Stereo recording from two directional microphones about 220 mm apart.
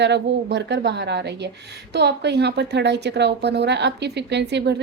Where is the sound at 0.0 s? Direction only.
50° right (ahead or behind).